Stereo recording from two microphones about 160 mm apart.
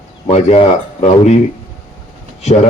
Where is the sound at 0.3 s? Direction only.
40° left (ahead or behind).